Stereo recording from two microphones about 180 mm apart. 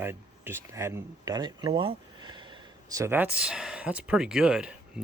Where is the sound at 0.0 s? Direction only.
15° right (ahead or behind).